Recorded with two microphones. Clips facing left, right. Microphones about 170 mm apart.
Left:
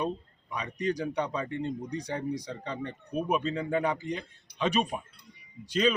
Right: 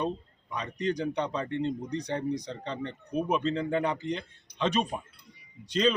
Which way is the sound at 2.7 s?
20° right (ahead or behind).